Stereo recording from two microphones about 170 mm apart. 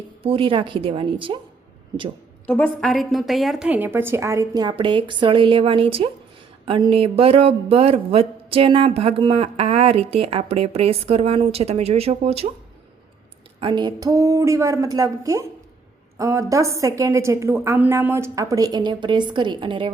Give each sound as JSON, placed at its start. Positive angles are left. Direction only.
{"t": 0.2, "sound": "a woman's voice", "side_deg": -30}
{"t": 2.5, "sound": "a woman's voice", "side_deg": 5}
{"t": 13.6, "sound": "a woman's voice", "side_deg": -25}